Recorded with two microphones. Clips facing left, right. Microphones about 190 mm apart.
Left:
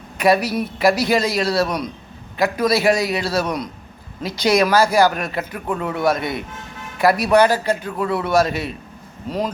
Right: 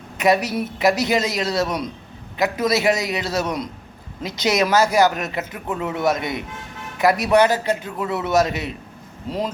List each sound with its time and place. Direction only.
0.2 s a man's voice: 20° right (ahead or behind)